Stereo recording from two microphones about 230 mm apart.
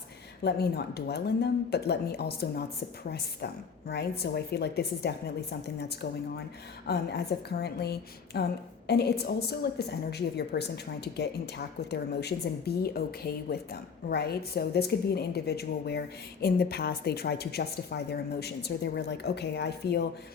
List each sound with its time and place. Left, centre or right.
0.4 s a woman's voice: left